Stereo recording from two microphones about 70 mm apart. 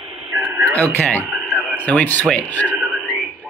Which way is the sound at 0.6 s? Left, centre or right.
Left.